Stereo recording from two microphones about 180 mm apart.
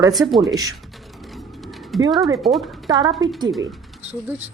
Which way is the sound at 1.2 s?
Centre (ahead or behind).